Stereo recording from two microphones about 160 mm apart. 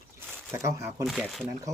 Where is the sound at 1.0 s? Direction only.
Centre (ahead or behind).